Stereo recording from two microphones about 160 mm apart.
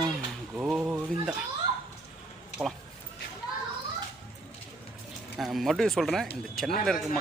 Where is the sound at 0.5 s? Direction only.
5° right (ahead or behind).